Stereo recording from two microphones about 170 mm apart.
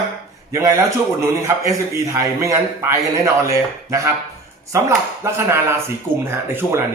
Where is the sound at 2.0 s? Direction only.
20° right (ahead or behind).